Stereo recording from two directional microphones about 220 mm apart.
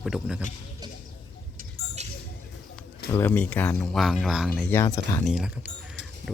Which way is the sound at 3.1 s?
10° left (ahead or behind).